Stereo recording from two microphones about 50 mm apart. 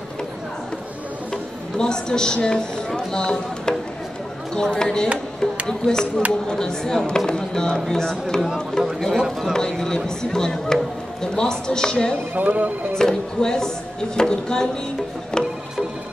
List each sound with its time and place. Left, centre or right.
1.3 s speech: centre
12.4 s speech: right
12.9 s speech: centre
15.3 s music: centre